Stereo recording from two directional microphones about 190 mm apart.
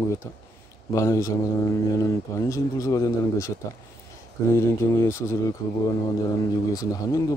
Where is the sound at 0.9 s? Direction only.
15° left (ahead or behind).